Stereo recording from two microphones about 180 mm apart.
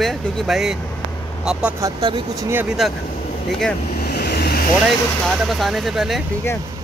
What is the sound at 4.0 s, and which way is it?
Vehicle, 65° left (ahead or behind).